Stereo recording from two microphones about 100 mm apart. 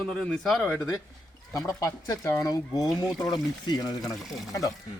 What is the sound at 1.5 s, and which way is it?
Speech, 30° left (ahead or behind).